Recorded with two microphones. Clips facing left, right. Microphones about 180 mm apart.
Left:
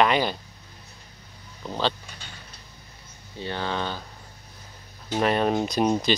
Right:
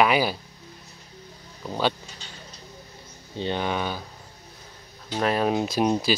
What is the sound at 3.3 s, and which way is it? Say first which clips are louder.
Speech: right 3 dB; 20° right (ahead or behind).